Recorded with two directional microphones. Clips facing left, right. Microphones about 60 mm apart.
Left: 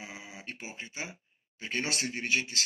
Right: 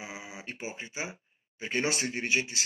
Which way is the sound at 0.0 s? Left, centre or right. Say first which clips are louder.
Right 2 dB; centre.